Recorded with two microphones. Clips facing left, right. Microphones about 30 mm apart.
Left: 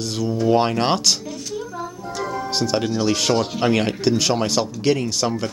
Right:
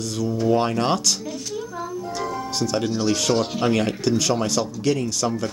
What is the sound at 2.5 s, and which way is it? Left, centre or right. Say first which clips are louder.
Speech: left 3 dB; left.